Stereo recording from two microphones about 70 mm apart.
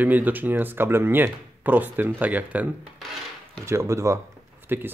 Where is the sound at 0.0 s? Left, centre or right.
Right.